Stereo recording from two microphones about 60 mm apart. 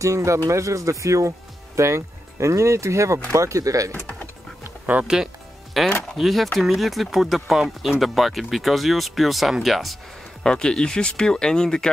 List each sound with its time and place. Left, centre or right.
0.0 s speech: right
5.0 s speech: centre
10.4 s speech: centre